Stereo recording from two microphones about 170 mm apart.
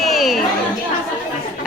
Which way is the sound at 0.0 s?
Centre (ahead or behind).